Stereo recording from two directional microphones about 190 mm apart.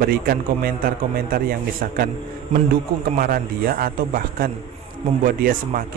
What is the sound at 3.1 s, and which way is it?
A man's voice, 50° right (ahead or behind).